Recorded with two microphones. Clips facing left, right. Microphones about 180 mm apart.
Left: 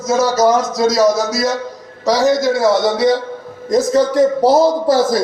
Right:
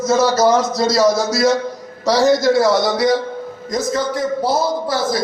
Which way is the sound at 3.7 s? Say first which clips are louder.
Left 7 dB; 35° left (ahead or behind).